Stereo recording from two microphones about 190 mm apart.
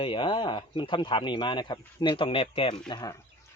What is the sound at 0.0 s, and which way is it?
A man's voice, 25° left (ahead or behind).